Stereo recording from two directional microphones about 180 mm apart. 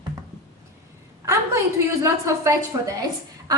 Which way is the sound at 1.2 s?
15° right (ahead or behind).